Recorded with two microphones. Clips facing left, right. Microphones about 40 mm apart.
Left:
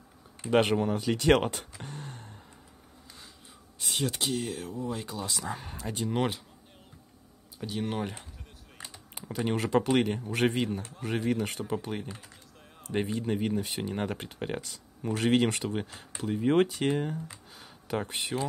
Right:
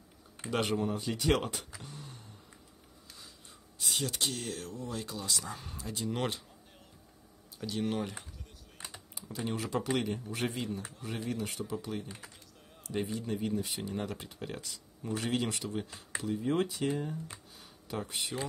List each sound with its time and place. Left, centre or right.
0.5 s speech: left
4.2 s speech: centre
5.5 s speech: left
6.1 s speech: centre
7.6 s speech: centre
9.1 s speech: left
10.0 s speech: left
17.9 s speech: left